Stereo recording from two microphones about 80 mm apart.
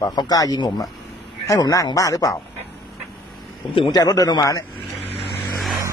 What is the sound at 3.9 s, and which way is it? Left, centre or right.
Speech, left.